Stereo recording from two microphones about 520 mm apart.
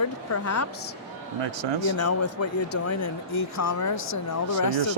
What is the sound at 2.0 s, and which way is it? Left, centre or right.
Speech, left.